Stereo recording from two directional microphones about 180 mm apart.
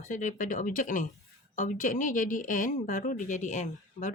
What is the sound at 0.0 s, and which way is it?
Speech, 45° left (ahead or behind).